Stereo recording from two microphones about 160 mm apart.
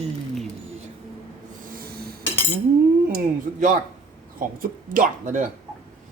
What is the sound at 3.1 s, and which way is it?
Speech, 55° right (ahead or behind).